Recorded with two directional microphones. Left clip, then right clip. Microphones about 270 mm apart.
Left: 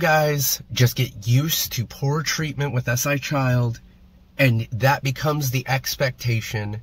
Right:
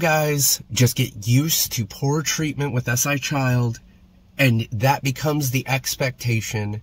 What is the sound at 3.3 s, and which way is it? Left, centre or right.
Speech, right.